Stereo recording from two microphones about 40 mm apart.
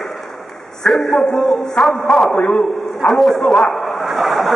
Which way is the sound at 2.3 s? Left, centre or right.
Left.